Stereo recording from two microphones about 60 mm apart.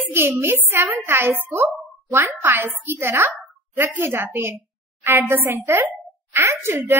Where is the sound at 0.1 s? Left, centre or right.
Right.